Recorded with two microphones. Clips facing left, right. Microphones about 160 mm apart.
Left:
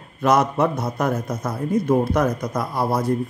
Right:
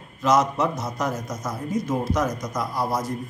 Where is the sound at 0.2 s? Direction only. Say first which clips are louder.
Left 2 dB; 60° left (ahead or behind).